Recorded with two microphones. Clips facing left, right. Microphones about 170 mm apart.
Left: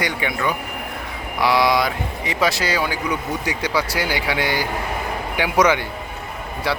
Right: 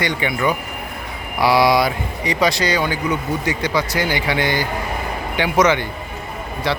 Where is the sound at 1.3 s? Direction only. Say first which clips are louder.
Right 3 dB; 10° right (ahead or behind).